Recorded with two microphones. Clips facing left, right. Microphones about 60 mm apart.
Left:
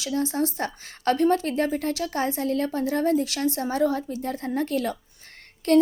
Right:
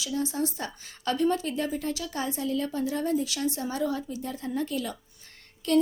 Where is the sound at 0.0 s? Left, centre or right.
Left.